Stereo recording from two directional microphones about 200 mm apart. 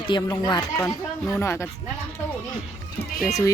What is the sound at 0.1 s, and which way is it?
Speech, 20° left (ahead or behind).